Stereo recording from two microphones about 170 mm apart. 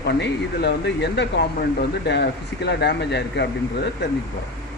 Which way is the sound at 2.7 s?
85° left.